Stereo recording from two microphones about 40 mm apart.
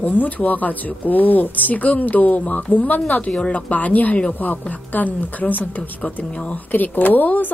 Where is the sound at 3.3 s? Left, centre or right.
Left.